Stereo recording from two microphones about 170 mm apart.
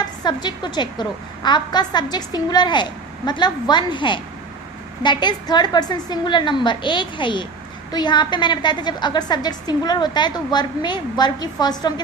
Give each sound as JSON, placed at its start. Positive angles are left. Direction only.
{"t": 0.2, "sound": "a woman's voice", "side_deg": 25}